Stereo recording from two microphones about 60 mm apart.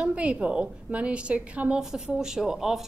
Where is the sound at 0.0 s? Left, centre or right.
Right.